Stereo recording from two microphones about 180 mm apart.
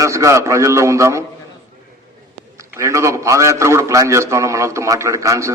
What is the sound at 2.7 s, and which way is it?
A man's voice, 15° right (ahead or behind).